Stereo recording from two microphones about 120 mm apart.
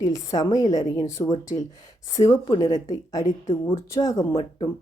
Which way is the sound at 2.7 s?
30° left (ahead or behind).